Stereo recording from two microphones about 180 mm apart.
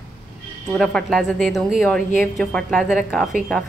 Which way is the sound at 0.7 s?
Centre (ahead or behind).